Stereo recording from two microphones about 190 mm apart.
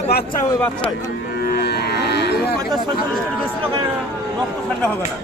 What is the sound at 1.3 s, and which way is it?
Livestock, 55° left (ahead or behind).